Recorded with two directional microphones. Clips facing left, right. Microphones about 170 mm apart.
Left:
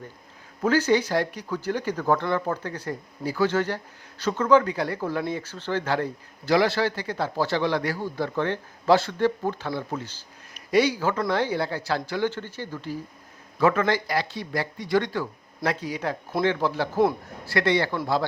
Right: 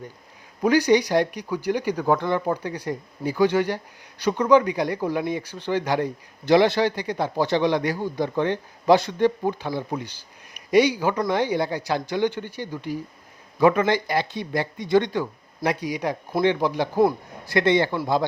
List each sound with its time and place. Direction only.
0.6 s speech: 15° right (ahead or behind)